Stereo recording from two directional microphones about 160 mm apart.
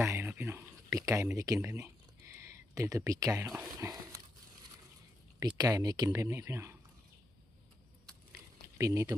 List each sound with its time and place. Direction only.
0.0 s a sound: 15° right (ahead or behind)
3.8 s dog: 20° right (ahead or behind)
5.4 s speech: 25° right (ahead or behind)
8.8 s speech: 20° right (ahead or behind)